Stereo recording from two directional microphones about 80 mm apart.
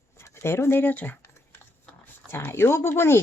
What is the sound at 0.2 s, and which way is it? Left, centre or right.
A woman's voice, left.